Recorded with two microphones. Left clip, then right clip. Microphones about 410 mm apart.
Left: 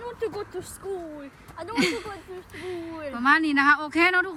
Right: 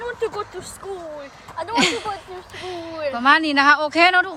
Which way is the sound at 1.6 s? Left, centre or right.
Right.